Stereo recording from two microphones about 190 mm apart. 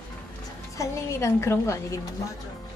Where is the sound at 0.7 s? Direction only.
15° left (ahead or behind).